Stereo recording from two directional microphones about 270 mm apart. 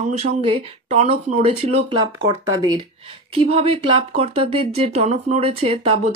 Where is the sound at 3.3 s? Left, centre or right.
Right.